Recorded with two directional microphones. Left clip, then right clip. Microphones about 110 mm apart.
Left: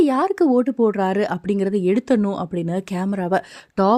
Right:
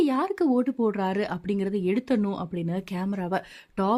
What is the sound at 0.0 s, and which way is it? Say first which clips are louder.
Speech: left 7 dB; 40° left (ahead or behind).